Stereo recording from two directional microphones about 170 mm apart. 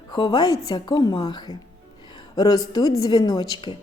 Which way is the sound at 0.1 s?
25° left (ahead or behind).